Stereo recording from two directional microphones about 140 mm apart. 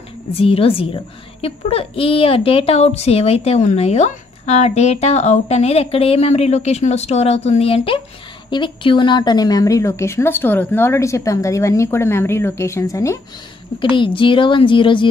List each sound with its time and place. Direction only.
0.3 s a child's voice: 45° left (ahead or behind); by 13.2 s 20° left (ahead or behind)
13.7 s a woman's voice: 35° left (ahead or behind)